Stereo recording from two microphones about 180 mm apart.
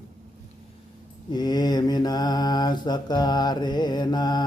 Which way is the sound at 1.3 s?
20° left (ahead or behind).